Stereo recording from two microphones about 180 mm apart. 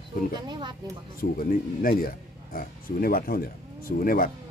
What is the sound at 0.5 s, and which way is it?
Speech, 25° right (ahead or behind).